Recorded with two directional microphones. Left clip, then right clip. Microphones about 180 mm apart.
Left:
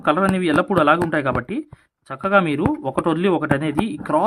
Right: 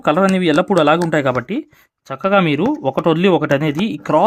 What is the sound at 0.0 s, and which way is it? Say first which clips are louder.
Speech: right 4 dB; 30° right (ahead or behind).